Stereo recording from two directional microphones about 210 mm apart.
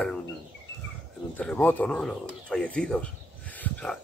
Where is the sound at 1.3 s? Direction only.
5° left (ahead or behind).